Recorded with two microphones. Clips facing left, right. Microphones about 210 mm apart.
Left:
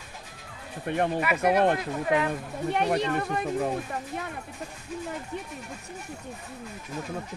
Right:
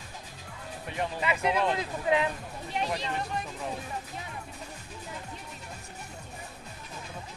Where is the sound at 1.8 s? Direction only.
20° right (ahead or behind).